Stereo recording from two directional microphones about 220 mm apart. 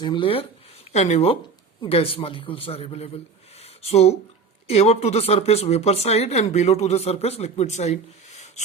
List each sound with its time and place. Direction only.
0.0 s speech: 20° left (ahead or behind)
3.6 s a sound: 30° left (ahead or behind)
4.7 s speech: 30° left (ahead or behind)